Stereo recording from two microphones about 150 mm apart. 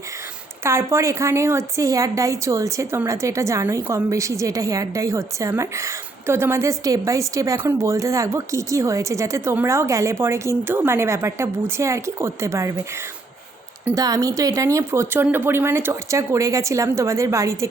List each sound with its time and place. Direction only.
0.6 s a woman's voice: 15° right (ahead or behind)
13.9 s a woman's voice: 25° right (ahead or behind)